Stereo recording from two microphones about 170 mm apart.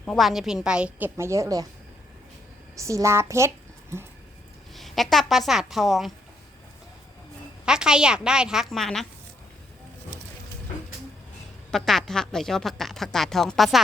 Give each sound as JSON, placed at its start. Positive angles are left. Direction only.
{"t": 0.0, "sound": "a woman's voice", "side_deg": 0}
{"t": 2.7, "sound": "a child's voice", "side_deg": -20}
{"t": 4.7, "sound": "a woman's voice", "side_deg": 0}
{"t": 7.6, "sound": "a woman's voice", "side_deg": -5}
{"t": 11.7, "sound": "a woman's voice", "side_deg": 0}